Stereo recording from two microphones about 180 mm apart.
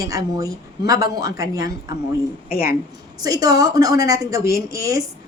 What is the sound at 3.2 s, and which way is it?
A woman's voice, 20° right (ahead or behind).